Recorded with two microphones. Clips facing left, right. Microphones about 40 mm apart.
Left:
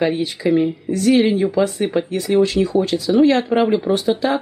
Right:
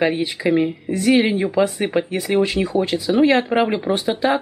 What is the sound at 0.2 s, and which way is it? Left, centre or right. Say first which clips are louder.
Speech: left 1 dB; centre.